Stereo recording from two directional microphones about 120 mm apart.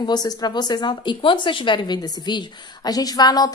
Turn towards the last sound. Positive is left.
turn(degrees=35)  # may be behind; listen again after turning